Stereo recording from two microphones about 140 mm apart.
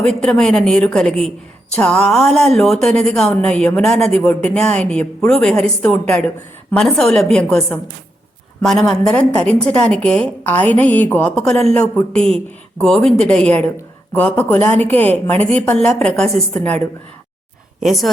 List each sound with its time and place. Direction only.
0.1 s a woman's voice: 5° left (ahead or behind)
17.7 s speech: centre (ahead or behind)